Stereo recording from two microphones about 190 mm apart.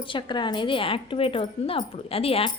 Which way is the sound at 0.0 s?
25° left (ahead or behind).